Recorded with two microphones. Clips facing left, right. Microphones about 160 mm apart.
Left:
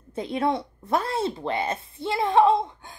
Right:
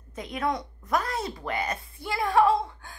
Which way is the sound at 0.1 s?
30° left (ahead or behind).